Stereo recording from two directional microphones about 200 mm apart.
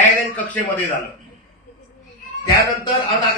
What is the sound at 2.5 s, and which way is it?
Speech, 25° left (ahead or behind).